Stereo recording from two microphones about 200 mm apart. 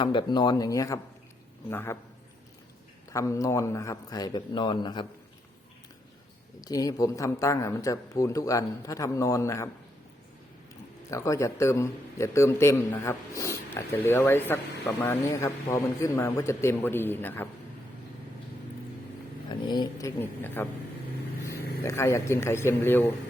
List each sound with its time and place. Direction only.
0.0 s a man's voice: 25° left (ahead or behind)
3.1 s a man's voice: 15° left (ahead or behind)
6.6 s a man's voice: 20° left (ahead or behind)
11.1 s a man's voice: 15° left (ahead or behind)
19.5 s a man's voice: 20° left (ahead or behind)